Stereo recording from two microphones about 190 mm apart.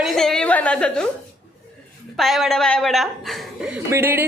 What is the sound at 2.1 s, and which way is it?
A woman's voice, centre (ahead or behind).